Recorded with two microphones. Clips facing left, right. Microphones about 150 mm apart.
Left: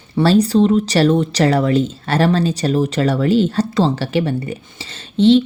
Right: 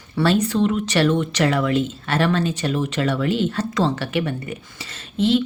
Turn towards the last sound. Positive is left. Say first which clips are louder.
# left 7 dB
turn(degrees=30)  # may be behind; listen again after turning